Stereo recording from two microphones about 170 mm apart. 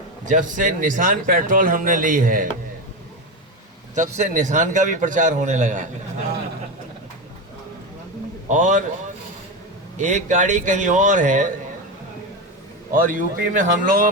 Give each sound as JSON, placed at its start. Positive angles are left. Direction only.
{"t": 0.3, "sound": "a man's voice", "side_deg": -50}
{"t": 3.9, "sound": "a man's voice", "side_deg": -45}
{"t": 8.4, "sound": "a man's voice", "side_deg": -45}
{"t": 10.0, "sound": "a man's voice", "side_deg": -45}
{"t": 12.9, "sound": "a man's voice", "side_deg": -50}